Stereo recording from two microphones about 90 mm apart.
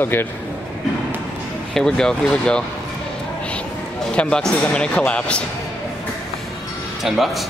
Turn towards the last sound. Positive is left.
turn(degrees=0)  # may be behind; listen again after turning